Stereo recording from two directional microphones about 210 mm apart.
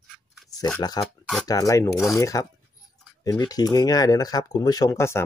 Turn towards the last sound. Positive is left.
turn(degrees=15)  # may be behind; listen again after turning